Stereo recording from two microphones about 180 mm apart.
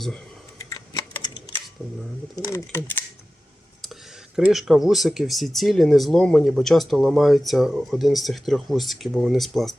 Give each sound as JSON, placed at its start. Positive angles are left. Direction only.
{"t": 2.3, "sound": "speech", "side_deg": 15}
{"t": 4.4, "sound": "speech", "side_deg": 0}